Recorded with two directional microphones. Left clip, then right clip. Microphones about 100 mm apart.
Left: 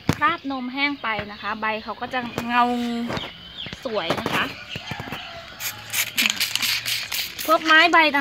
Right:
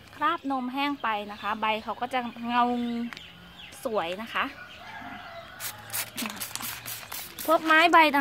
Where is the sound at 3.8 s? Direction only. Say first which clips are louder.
Left 2 dB; 30° right (ahead or behind).